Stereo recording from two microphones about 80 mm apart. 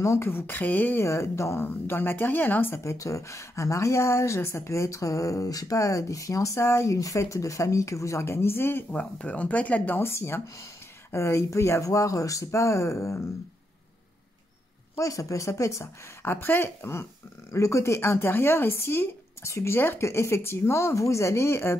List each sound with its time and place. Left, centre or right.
0.0 s a woman's voice: left
1.0 s a woman's voice: left
2.8 s speech: left
8.9 s speech: centre; by 13.2 s left
15.0 s speech: left